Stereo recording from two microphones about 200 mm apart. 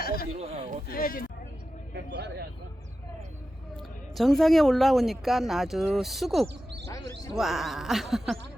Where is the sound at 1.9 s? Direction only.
55° right (ahead or behind).